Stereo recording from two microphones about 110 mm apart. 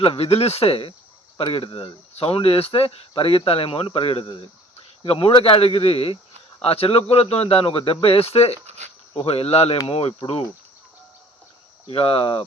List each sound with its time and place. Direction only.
0.0 s speech: 60° left (ahead or behind)
8.6 s a sound: 85° right
9.2 s cricket: 65° left (ahead or behind)
9.8 s speech: 65° left (ahead or behind)
11.9 s speech: 55° left (ahead or behind)